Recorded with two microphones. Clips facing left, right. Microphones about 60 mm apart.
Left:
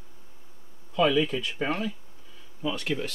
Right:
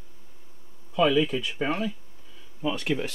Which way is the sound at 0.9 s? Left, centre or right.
Centre.